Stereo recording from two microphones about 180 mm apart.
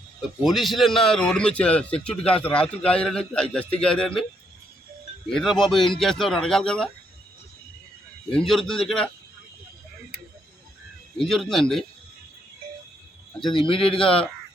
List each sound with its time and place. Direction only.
0.2 s a man's voice: centre (ahead or behind)
5.3 s a man's voice: centre (ahead or behind)
8.3 s a man's voice: 5° left (ahead or behind)
11.2 s a man's voice: centre (ahead or behind)
13.5 s a man's voice: 30° left (ahead or behind)
14.0 s a man's voice: 5° left (ahead or behind)